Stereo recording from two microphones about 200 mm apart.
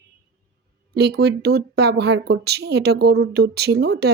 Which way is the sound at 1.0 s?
55° right (ahead or behind).